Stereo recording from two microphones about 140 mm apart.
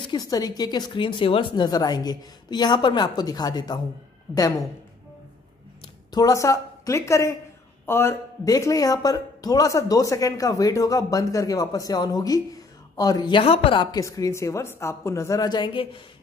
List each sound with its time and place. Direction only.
0.0 s speech: 30° left (ahead or behind)
6.1 s speech: 25° left (ahead or behind); by 13.8 s 40° left (ahead or behind)
13.9 s speech: 25° left (ahead or behind)